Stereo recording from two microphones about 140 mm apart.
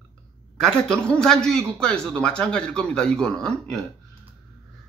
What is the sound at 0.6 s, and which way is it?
A man's voice, 5° left (ahead or behind).